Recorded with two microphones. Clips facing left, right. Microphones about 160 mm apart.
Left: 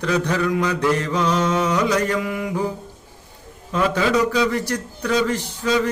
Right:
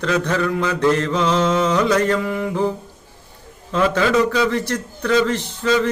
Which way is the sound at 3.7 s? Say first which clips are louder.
Right 2 dB; 15° left (ahead or behind).